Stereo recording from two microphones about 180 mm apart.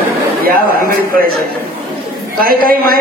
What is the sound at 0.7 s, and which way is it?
Speech, 55° right (ahead or behind).